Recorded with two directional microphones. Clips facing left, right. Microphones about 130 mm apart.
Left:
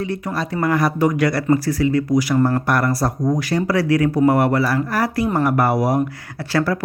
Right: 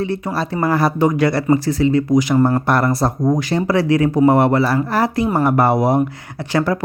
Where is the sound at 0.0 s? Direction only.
30° right (ahead or behind).